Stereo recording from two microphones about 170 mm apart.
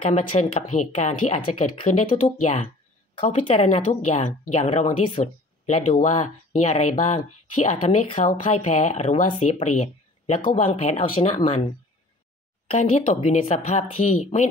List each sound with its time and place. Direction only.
0.0 s speech: 45° left (ahead or behind)
12.7 s speech: 45° left (ahead or behind)